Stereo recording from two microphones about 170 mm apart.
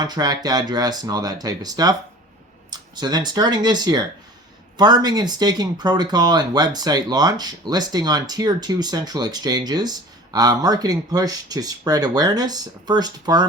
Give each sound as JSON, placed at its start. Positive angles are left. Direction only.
{"t": 0.0, "sound": "speech", "side_deg": -25}